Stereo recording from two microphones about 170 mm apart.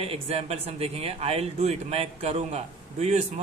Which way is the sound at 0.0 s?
35° right (ahead or behind).